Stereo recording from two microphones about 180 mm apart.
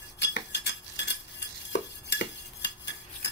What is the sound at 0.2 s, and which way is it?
Cutlery, 80° left.